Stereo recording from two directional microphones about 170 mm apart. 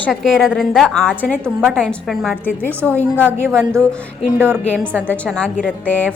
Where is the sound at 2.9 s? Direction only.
10° left (ahead or behind).